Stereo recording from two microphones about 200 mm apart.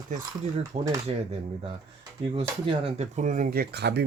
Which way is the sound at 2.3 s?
30° right (ahead or behind).